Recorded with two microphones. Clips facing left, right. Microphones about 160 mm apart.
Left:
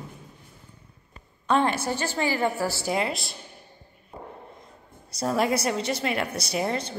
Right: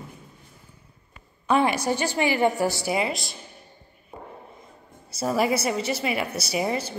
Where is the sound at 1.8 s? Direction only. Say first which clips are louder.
Right 3 dB; 15° right (ahead or behind).